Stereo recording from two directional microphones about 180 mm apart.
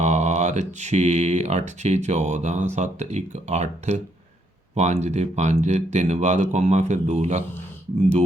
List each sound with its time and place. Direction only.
0.0 s speech: 40° right (ahead or behind)